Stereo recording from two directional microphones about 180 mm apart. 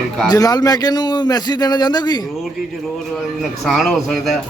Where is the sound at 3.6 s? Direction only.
Centre (ahead or behind).